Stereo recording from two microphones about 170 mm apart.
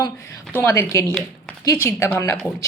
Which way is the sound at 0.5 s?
15° left (ahead or behind).